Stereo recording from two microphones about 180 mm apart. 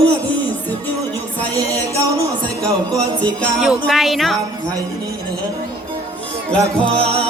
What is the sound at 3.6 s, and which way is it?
Speech, centre (ahead or behind).